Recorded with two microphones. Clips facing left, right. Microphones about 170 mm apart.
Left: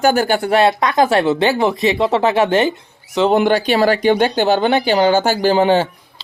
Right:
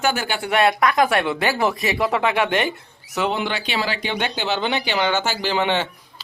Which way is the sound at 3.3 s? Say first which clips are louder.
Left 11 dB; 45° left (ahead or behind).